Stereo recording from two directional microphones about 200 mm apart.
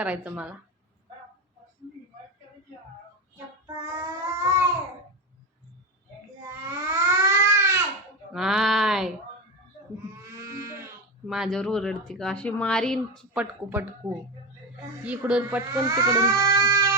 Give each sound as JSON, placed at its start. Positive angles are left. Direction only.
{"t": 0.0, "sound": "speech", "side_deg": -5}
{"t": 3.8, "sound": "child singing", "side_deg": -15}
{"t": 6.5, "sound": "babbling", "side_deg": -15}
{"t": 8.3, "sound": "speech", "side_deg": 0}
{"t": 10.2, "sound": "livestock", "side_deg": -15}
{"t": 11.3, "sound": "speech", "side_deg": 0}
{"t": 13.4, "sound": "speech", "side_deg": -10}
{"t": 15.0, "sound": "speech", "side_deg": -5}